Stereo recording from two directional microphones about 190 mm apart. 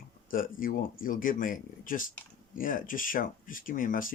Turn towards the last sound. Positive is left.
turn(degrees=45)  # may be behind; listen again after turning